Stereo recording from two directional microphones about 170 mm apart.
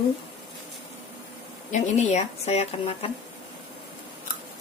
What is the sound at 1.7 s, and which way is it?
Speech, 40° left (ahead or behind).